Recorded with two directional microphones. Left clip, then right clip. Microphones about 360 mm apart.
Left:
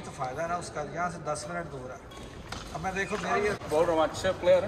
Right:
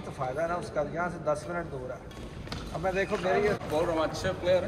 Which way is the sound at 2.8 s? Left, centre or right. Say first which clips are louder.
Right 3 dB; centre.